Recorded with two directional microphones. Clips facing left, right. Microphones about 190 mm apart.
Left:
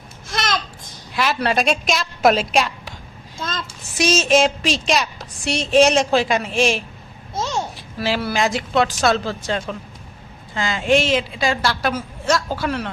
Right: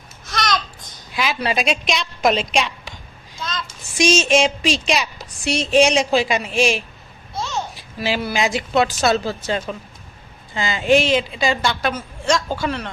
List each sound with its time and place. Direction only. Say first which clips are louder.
0.3 s babbling: right 1 dB; 25° left (ahead or behind)
1.1 s a woman's voice: left 2 dB; centre (ahead or behind)
3.3 s a sound: left 1 dB; 50° left (ahead or behind)
3.9 s a woman's voice: even; 5° left (ahead or behind)
7.9 s a woman's voice: left 1 dB; centre (ahead or behind)